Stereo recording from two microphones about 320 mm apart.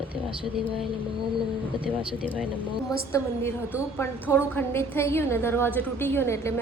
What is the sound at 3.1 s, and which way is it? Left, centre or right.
A woman's voice, centre.